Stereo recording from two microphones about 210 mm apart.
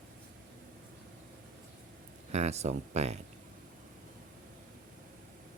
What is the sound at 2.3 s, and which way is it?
Speech, 30° right (ahead or behind).